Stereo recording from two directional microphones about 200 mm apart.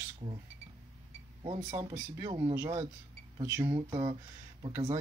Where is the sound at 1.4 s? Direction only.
25° right (ahead or behind).